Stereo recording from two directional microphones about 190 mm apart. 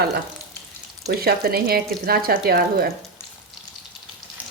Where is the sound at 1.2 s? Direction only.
55° right (ahead or behind).